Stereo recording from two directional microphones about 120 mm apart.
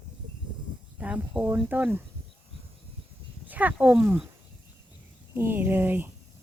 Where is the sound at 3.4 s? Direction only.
15° right (ahead or behind).